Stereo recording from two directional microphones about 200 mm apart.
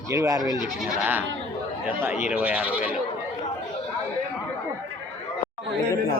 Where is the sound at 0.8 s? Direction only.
5° right (ahead or behind).